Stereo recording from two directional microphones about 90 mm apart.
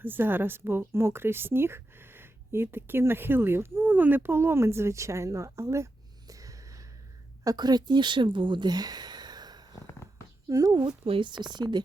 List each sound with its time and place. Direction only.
0.0 s a woman's voice: 20° right (ahead or behind); by 6.8 s 40° right (ahead or behind)
7.4 s speech: 50° right (ahead or behind)
11.0 s speech: 75° right (ahead or behind); by 11.8 s 55° right (ahead or behind)